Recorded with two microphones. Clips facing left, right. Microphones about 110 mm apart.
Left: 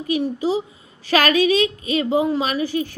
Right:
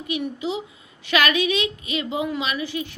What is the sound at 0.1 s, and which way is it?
A woman's voice, 35° left (ahead or behind).